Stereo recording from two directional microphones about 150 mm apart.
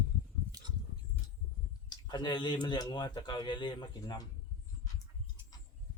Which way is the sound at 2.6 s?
30° left (ahead or behind).